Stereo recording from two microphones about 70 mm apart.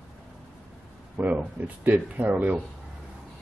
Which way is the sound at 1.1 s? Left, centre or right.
Right.